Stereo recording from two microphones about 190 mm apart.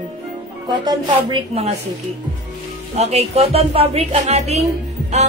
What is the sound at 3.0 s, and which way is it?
A woman's voice, 35° right (ahead or behind).